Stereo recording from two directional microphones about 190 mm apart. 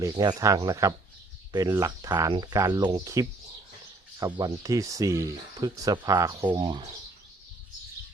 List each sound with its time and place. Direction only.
0.0 s speech: 20° right (ahead or behind)
4.4 s speech: 20° right (ahead or behind)